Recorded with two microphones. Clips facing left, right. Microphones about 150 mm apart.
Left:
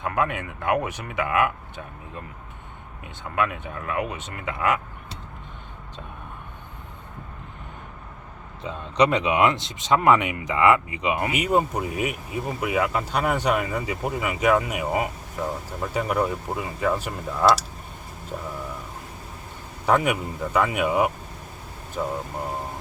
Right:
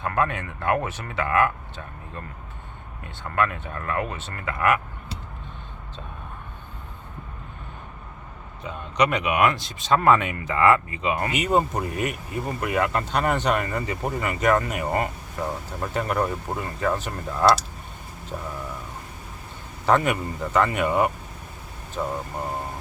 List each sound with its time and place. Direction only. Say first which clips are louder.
0.0 s speech: even; 15° left (ahead or behind)
3.2 s speech: right 1 dB; 10° left (ahead or behind)
8.6 s speech: left 2 dB; 30° left (ahead or behind)
11.3 s speech: right 1 dB; 5° left (ahead or behind)
19.8 s speech: even; 5° left (ahead or behind)